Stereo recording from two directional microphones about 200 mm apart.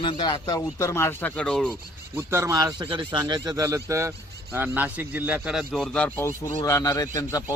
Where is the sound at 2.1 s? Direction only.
15° right (ahead or behind).